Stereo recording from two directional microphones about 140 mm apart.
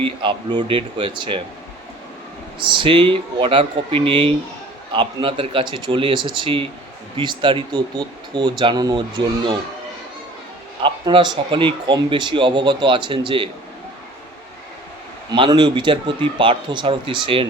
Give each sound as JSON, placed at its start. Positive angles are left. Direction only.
{"t": 0.0, "sound": "speech", "side_deg": -35}
{"t": 2.6, "sound": "speech", "side_deg": -35}
{"t": 10.8, "sound": "speech", "side_deg": -35}
{"t": 15.3, "sound": "speech", "side_deg": -30}